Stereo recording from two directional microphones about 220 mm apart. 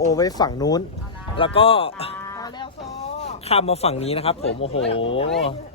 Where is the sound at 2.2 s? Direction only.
15° left (ahead or behind).